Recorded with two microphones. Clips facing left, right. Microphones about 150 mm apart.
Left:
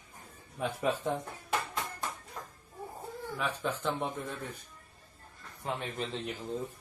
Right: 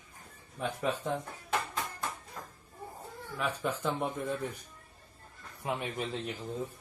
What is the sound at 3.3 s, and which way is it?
Speech, 10° right (ahead or behind).